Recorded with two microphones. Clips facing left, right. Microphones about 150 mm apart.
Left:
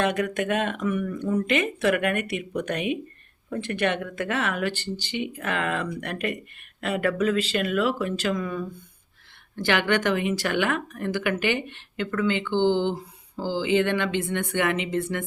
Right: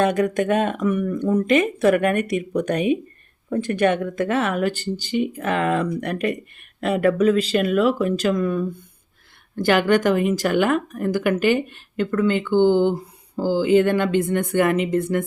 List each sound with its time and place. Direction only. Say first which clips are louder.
0.0 s speech: right 5 dB; 40° right (ahead or behind)